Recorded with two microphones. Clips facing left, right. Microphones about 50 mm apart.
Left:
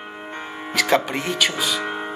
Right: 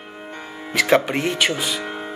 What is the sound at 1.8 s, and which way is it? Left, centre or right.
Music, left.